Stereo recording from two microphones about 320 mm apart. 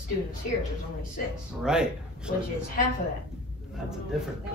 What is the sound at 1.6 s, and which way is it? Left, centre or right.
Speech, centre.